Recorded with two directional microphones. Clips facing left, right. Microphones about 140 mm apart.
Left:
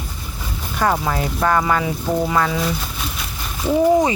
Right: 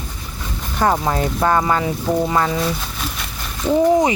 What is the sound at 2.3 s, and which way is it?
Speech, 25° right (ahead or behind).